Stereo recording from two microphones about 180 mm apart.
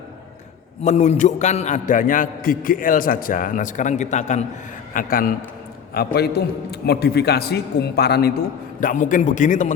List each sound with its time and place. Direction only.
0.9 s a man's voice: 40° left (ahead or behind)
4.9 s a man's voice: 55° left (ahead or behind)
8.8 s a man's voice: 45° left (ahead or behind)